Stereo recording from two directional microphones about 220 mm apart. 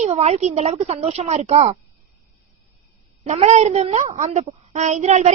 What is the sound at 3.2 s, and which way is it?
A woman's voice, 30° right (ahead or behind).